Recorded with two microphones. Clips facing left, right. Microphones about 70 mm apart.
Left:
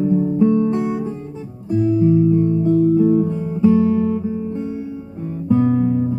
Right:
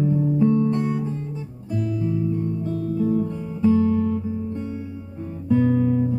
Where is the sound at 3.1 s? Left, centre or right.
Left.